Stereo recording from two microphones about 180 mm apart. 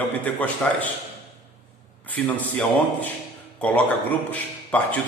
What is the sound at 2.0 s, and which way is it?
A man's voice, 10° left (ahead or behind).